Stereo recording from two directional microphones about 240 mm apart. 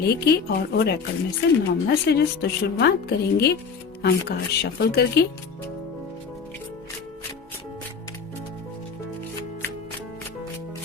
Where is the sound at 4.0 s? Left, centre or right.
Left.